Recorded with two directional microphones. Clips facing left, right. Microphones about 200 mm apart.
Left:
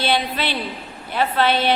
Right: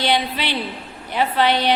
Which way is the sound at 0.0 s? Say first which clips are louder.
Even; 15° right (ahead or behind).